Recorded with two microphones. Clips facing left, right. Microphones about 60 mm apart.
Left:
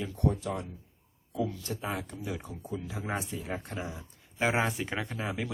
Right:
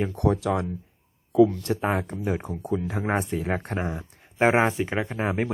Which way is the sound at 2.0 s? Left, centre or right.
Right.